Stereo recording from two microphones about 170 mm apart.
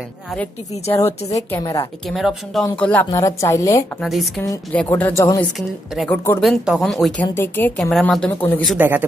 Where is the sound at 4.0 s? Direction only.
Centre (ahead or behind).